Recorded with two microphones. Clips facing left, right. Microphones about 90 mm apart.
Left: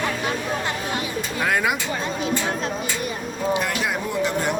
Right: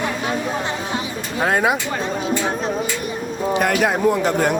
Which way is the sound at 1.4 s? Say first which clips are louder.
Right 4 dB; 30° right (ahead or behind).